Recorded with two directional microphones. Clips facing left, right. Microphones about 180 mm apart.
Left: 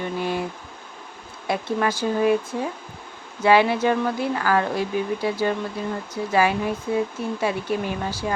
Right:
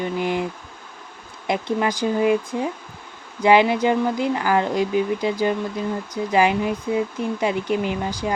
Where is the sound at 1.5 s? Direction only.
15° right (ahead or behind).